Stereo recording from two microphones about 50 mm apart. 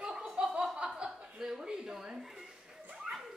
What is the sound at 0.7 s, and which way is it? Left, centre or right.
Chuckle, centre.